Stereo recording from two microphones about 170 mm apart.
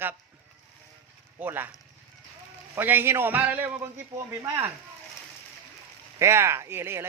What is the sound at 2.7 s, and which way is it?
Speech, 10° right (ahead or behind).